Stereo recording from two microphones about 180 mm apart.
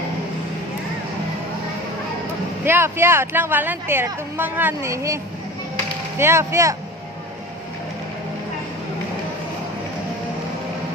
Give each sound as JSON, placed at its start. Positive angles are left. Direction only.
{"t": 2.6, "sound": "a woman's voice", "side_deg": -15}